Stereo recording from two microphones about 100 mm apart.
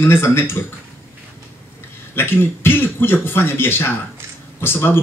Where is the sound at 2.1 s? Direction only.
25° left (ahead or behind).